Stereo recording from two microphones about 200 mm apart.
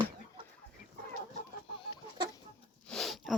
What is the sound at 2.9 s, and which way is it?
Dog, centre (ahead or behind).